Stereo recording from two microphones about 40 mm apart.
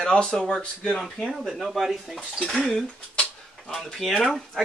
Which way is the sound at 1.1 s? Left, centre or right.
Centre.